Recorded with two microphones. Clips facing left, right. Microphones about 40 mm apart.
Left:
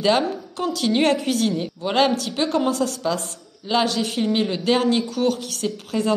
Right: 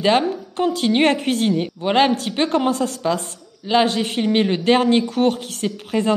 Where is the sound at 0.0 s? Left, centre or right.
Right.